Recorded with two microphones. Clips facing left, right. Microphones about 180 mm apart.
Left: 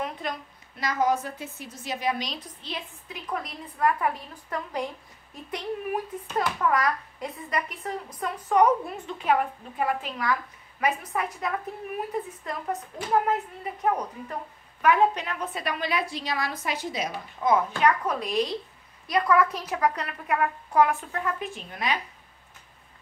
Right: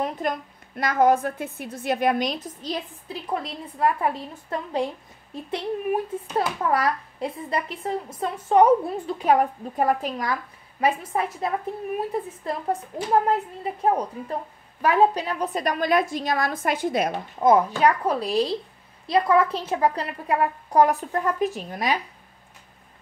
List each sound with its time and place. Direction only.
0.0 s a woman's voice: 50° right (ahead or behind)
10.8 s a woman's voice: 30° right (ahead or behind); by 17.7 s 45° right (ahead or behind)
17.8 s a child's voice: 35° right (ahead or behind)